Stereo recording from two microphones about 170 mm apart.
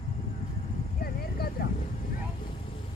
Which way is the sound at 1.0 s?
65° left (ahead or behind).